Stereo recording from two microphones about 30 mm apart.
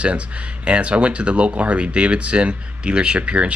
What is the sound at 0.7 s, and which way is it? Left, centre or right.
Speech, right.